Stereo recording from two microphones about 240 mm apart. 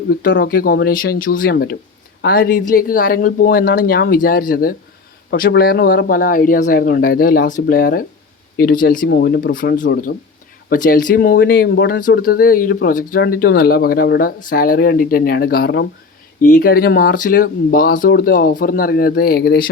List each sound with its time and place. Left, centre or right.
0.3 s speech: left